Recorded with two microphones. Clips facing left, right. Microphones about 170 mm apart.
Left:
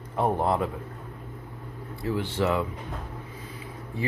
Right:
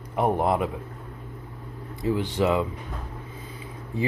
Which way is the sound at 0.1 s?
15° right (ahead or behind).